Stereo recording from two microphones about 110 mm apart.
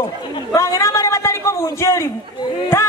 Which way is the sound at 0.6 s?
30° left (ahead or behind).